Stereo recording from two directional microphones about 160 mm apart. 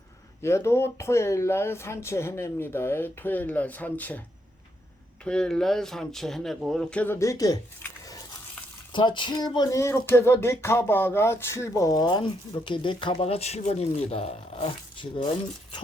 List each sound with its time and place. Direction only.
0.4 s speech: 15° left (ahead or behind)
5.2 s speech: 5° left (ahead or behind); by 15.3 s 30° left (ahead or behind)